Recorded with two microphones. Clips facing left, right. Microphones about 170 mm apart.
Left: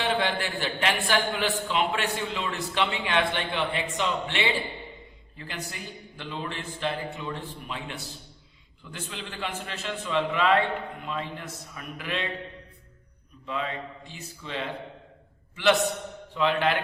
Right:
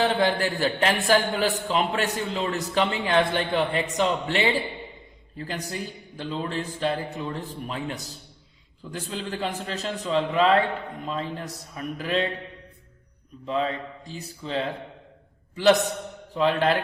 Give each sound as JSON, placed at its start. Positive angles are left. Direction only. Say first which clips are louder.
{"t": 0.0, "sound": "a man's voice", "louder": "right 5 dB", "side_deg": -40}
{"t": 13.4, "sound": "a man's voice", "louder": "right 5 dB", "side_deg": -35}
{"t": 16.3, "sound": "a man's voice", "louder": "right 3 dB", "side_deg": -35}